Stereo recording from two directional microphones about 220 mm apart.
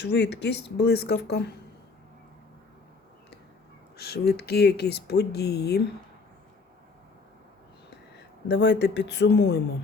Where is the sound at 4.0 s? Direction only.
45° left (ahead or behind).